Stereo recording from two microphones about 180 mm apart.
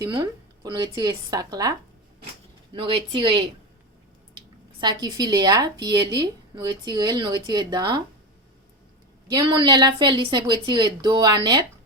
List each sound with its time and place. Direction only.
0.0 s speech: 25° right (ahead or behind)
2.7 s speech: 30° right (ahead or behind)
9.3 s speech: 25° right (ahead or behind)